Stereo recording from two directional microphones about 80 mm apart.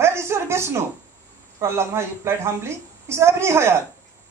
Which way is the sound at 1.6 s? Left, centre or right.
Right.